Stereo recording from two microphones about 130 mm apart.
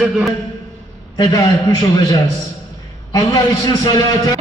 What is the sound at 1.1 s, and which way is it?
A man's voice, 30° left (ahead or behind).